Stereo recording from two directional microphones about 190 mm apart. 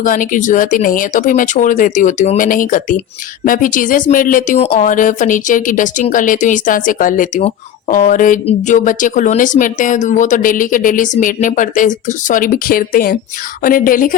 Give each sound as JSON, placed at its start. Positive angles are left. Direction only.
{"t": 0.0, "sound": "speech", "side_deg": 45}